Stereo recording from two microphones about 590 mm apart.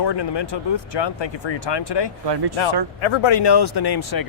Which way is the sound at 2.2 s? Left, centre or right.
Right.